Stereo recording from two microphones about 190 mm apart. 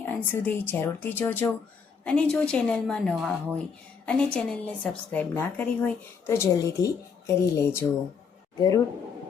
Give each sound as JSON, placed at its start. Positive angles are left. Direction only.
{"t": 0.0, "sound": "a woman's voice", "side_deg": 10}